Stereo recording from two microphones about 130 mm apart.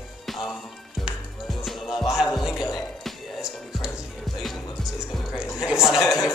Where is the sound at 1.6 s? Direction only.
5° right (ahead or behind).